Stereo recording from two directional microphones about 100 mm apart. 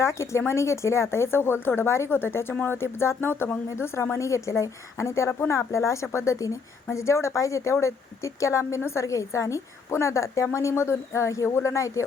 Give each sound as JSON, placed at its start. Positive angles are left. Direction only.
{"t": 0.0, "sound": "speech", "side_deg": 25}